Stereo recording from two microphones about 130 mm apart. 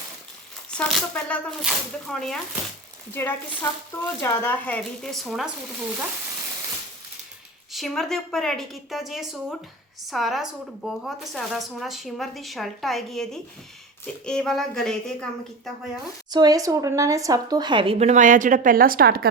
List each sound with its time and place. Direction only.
0.7 s a woman's voice: 10° left (ahead or behind)
3.1 s speech: 15° left (ahead or behind); by 5.5 s centre (ahead or behind)
7.7 s a woman's voice: centre (ahead or behind)
16.3 s speech: 30° right (ahead or behind)
17.9 s speech: 60° right (ahead or behind); by 18.9 s 90° right